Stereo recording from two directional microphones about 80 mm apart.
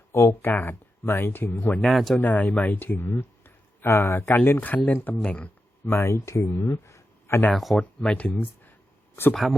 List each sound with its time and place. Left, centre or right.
0.1 s speech: left
1.8 s speech: centre
2.2 s speech: centre
4.5 s speech: left
5.8 s speech: left
7.5 s speech: centre
7.8 s speech: centre
9.3 s speech: centre